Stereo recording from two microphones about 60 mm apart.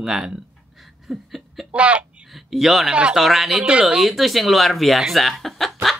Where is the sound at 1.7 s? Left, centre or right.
Centre.